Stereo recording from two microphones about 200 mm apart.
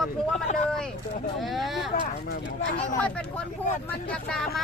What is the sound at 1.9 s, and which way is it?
Speech, 45° left (ahead or behind).